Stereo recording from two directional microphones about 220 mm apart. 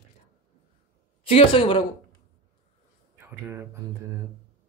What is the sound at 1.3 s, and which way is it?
Speech, 25° left (ahead or behind).